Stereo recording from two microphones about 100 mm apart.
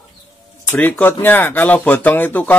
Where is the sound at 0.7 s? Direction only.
20° left (ahead or behind).